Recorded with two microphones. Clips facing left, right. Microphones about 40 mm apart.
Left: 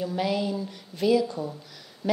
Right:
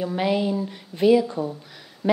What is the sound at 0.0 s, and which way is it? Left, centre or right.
A woman's voice, right.